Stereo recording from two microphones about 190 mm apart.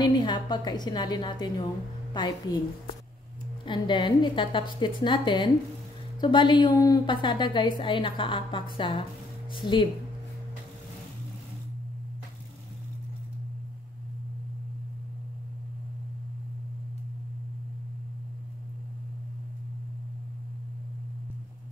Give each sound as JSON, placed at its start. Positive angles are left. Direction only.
{"t": 0.0, "sound": "a woman's voice", "side_deg": 20}
{"t": 3.6, "sound": "a woman's voice", "side_deg": 25}